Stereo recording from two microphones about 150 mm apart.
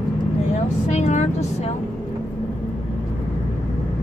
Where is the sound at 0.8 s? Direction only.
50° left (ahead or behind).